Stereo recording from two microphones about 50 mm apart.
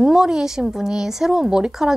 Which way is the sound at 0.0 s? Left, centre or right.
Centre.